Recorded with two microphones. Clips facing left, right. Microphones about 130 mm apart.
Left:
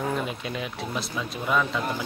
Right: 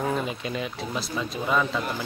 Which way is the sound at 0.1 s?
Centre (ahead or behind).